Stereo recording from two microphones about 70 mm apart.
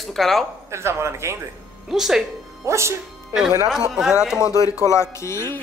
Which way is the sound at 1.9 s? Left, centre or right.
Centre.